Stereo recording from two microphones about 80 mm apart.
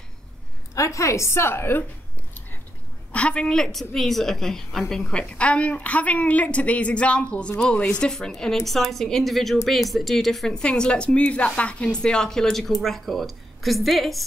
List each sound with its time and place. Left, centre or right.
0.7 s a woman's voice: left
3.1 s a woman's voice: centre